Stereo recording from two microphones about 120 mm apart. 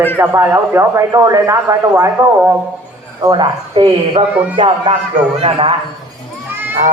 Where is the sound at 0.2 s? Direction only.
20° right (ahead or behind).